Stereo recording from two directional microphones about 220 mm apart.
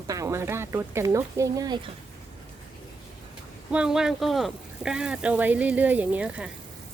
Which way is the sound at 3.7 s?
5° right (ahead or behind).